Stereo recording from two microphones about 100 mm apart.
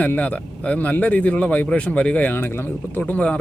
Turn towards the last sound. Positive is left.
turn(degrees=15)  # may be behind; listen again after turning